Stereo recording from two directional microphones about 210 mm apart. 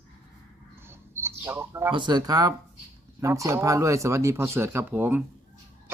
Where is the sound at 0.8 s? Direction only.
10° right (ahead or behind).